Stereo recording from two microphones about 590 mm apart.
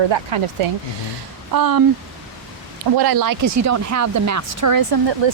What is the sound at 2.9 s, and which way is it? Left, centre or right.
Speech, right.